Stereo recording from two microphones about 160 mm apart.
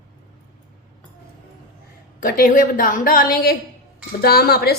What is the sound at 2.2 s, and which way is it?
A woman's voice, 60° left (ahead or behind).